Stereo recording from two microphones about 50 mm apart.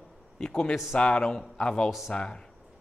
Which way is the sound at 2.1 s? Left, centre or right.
Centre.